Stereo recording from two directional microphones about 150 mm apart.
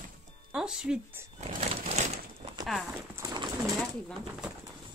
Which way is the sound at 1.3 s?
45° right (ahead or behind).